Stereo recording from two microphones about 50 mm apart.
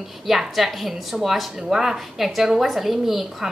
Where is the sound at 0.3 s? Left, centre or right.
Centre.